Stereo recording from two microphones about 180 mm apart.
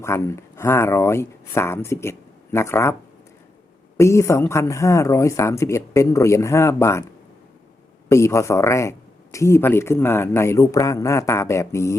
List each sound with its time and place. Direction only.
0.0 s speech: 15° left (ahead or behind)
3.9 s speech: 15° left (ahead or behind)
8.1 s speech: 15° left (ahead or behind)